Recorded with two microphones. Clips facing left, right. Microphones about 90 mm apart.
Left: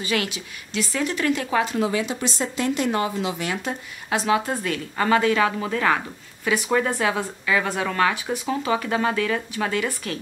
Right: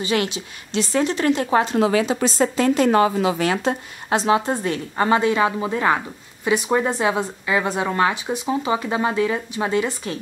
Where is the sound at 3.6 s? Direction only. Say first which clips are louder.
Right 7 dB; 30° right (ahead or behind).